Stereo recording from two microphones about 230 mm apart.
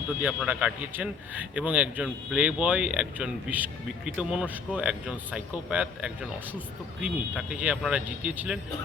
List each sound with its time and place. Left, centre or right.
0.2 s a man's voice: centre